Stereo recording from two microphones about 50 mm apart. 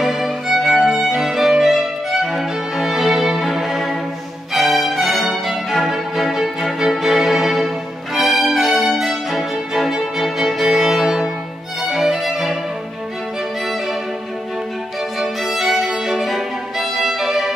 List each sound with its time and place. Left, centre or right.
0.0 s music: centre
11.8 s violin: centre
15.1 s violin: centre